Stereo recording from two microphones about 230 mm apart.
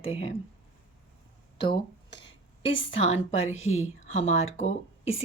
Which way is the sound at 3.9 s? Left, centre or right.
Left.